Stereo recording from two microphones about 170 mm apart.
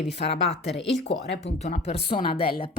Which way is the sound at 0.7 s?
90° left.